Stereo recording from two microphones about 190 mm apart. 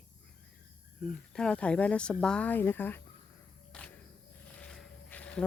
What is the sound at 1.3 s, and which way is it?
Speech, 5° left (ahead or behind).